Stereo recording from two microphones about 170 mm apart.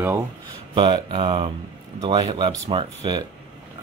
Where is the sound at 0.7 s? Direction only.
30° right (ahead or behind).